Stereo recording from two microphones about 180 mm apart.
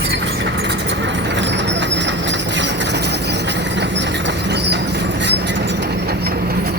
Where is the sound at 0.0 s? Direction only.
75° right (ahead or behind).